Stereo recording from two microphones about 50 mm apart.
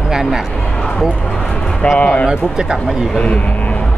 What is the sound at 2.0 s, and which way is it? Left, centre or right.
Speech, left.